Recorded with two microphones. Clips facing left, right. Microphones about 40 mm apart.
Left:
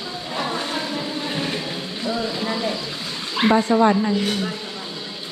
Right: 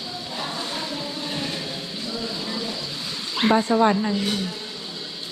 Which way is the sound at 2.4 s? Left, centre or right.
Left.